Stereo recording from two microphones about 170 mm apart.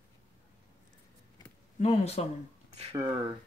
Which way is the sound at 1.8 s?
40° left (ahead or behind).